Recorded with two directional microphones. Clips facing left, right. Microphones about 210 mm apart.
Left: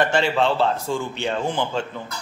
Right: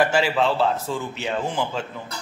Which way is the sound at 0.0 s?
5° right (ahead or behind).